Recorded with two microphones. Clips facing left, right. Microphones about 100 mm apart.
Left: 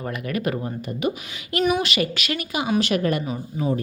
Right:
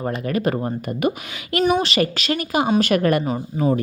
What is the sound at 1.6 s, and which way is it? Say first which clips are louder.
A woman's voice: right 3 dB; 35° right (ahead or behind).